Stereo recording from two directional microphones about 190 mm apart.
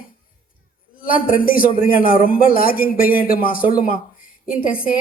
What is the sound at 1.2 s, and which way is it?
A man's voice, 50° left (ahead or behind).